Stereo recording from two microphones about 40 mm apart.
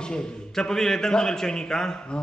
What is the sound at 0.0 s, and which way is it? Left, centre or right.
A man's voice, centre.